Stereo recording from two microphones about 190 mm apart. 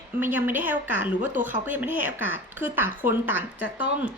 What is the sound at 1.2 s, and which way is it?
Speech, 45° right (ahead or behind).